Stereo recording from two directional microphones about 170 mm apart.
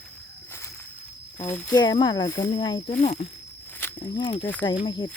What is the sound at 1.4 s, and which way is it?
Speech, 10° left (ahead or behind).